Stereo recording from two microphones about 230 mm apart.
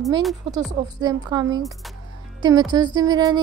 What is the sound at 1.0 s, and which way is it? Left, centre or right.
A woman's voice, centre.